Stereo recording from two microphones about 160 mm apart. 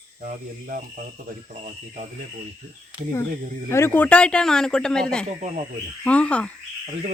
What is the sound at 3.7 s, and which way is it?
A man's voice, 15° left (ahead or behind).